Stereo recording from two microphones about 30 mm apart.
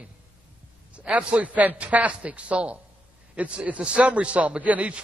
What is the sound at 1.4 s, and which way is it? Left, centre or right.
A man's voice, right.